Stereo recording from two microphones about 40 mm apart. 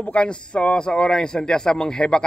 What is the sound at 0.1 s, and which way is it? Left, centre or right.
A man's voice, left.